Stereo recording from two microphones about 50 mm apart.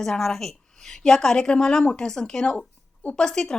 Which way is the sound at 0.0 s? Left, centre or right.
Centre.